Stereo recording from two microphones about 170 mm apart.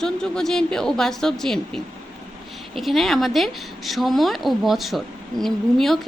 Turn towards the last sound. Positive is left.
turn(degrees=0)  # may be behind; listen again after turning